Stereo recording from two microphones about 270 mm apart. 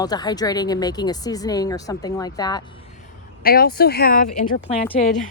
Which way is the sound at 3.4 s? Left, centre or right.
Left.